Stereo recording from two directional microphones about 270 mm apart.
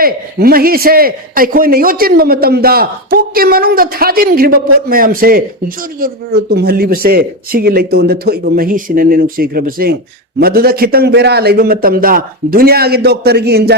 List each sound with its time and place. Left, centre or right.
0.0 s a man's voice: right